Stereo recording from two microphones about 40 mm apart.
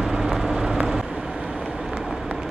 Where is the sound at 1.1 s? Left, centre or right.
Right.